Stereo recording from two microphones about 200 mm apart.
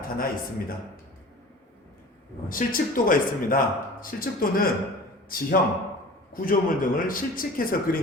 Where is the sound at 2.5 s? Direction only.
45° left (ahead or behind).